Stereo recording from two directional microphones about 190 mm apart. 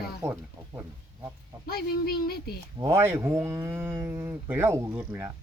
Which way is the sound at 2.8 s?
15° right (ahead or behind).